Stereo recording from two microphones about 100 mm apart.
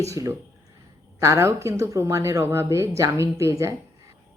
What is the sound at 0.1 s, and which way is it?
A woman's voice, 30° right (ahead or behind).